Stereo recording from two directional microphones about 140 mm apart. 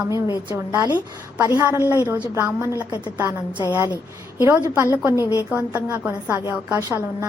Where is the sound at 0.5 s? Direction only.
15° right (ahead or behind).